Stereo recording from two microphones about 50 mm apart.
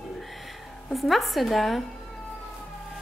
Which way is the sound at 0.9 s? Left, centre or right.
Centre.